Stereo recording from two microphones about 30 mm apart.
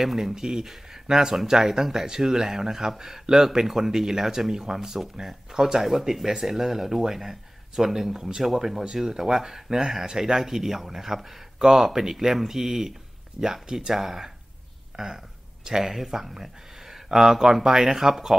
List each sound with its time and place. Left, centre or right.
0.0 s speech: centre